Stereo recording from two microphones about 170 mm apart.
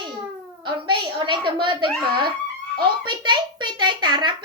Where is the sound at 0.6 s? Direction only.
25° right (ahead or behind).